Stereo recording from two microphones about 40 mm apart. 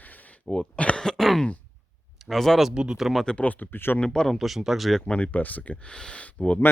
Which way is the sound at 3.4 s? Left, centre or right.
Left.